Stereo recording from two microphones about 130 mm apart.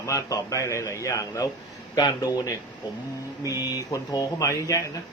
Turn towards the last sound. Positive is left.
turn(degrees=25)  # may be behind; listen again after turning